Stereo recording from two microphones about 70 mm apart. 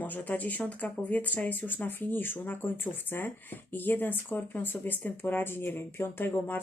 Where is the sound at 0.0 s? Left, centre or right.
Left.